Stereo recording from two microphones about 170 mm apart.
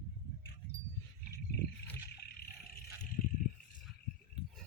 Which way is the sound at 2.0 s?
65° left (ahead or behind).